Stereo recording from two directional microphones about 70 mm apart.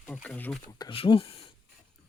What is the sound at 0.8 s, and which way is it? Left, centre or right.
Speech, left.